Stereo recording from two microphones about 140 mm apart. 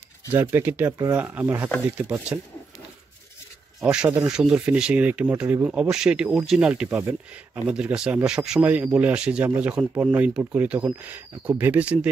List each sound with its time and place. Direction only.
0.3 s speech: 15° right (ahead or behind)
3.8 s speech: 5° right (ahead or behind)